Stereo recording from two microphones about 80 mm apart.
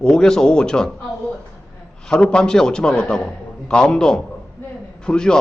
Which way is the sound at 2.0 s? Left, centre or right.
Centre.